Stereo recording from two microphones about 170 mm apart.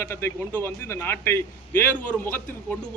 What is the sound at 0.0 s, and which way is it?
A man's voice, 15° left (ahead or behind).